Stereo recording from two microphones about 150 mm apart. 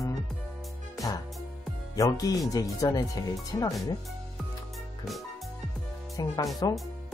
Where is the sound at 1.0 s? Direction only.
25° left (ahead or behind).